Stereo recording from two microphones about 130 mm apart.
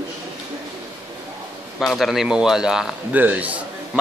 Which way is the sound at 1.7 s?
Centre (ahead or behind).